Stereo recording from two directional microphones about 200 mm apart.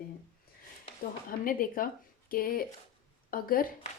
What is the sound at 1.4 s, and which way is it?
A woman's voice, 45° left (ahead or behind).